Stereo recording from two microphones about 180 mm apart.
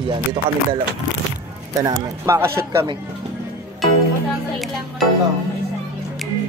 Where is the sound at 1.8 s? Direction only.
15° right (ahead or behind).